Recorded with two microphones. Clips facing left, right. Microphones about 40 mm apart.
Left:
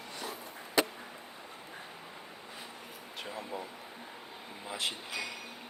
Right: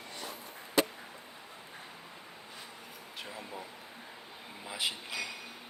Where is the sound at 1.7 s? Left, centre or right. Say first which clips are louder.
Left 2 dB; centre.